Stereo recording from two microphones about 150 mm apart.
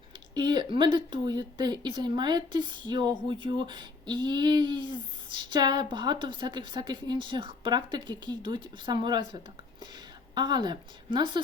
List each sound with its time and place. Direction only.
0.3 s a woman's voice: 30° right (ahead or behind)